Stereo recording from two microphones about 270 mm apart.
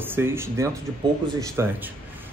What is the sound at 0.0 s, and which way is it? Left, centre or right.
Speech, centre.